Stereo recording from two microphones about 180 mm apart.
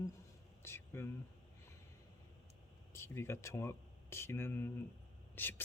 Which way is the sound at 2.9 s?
15° left (ahead or behind).